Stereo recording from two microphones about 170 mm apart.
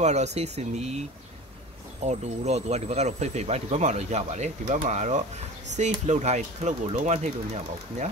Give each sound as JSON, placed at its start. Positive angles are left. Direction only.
{"t": 0.0, "sound": "speech", "side_deg": -40}
{"t": 2.0, "sound": "speech", "side_deg": -40}